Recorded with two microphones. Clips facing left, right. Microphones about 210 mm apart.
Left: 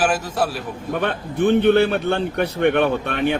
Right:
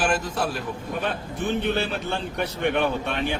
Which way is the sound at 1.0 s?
60° left (ahead or behind).